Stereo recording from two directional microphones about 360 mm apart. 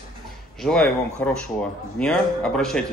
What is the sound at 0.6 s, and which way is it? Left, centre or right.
Speech, centre.